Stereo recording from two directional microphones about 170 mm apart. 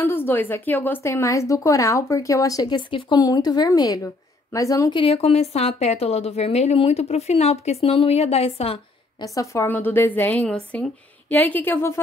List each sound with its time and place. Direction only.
0.0 s a woman's voice: 15° left (ahead or behind)
5.0 s a woman's voice: 35° left (ahead or behind)
9.2 s a woman's voice: 20° left (ahead or behind)